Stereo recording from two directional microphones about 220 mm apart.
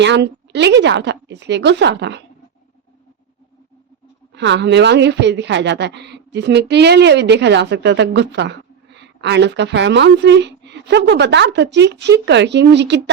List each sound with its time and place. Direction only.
0.0 s a man's voice: 50° right (ahead or behind)
4.4 s a man's voice: 50° right (ahead or behind)